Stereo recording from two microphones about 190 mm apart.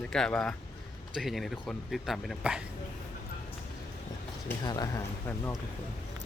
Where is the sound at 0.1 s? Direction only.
5° left (ahead or behind).